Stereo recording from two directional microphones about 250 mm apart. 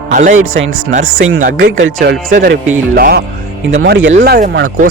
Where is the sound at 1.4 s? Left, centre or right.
Right.